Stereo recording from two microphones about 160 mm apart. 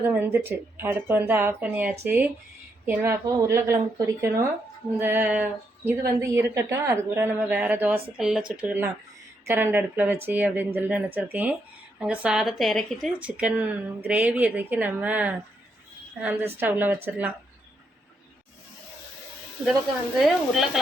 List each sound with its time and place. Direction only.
0.0 s speech: 10° right (ahead or behind)
20.1 s speech: centre (ahead or behind)